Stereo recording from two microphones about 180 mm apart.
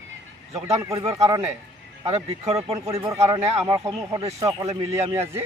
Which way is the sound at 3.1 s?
20° right (ahead or behind).